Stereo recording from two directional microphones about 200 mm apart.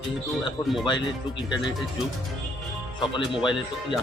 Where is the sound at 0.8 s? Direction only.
25° left (ahead or behind).